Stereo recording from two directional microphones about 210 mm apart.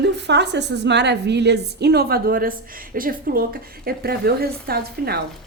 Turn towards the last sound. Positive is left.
turn(degrees=-50)  # may be behind; listen again after turning